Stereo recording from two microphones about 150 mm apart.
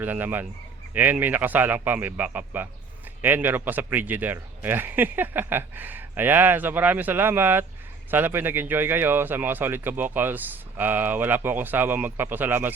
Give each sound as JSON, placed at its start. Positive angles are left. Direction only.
{"t": 0.0, "sound": "speech", "side_deg": -10}